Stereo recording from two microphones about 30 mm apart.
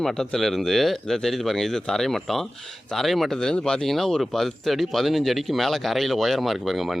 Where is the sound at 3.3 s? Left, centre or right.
Centre.